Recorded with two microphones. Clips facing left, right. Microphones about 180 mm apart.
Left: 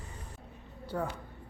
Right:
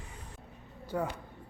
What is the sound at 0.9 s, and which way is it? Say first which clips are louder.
Speech: right 1 dB; 5° right (ahead or behind).